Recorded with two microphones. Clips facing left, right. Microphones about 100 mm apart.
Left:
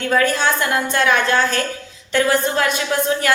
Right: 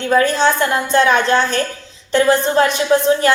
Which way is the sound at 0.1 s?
25° right (ahead or behind).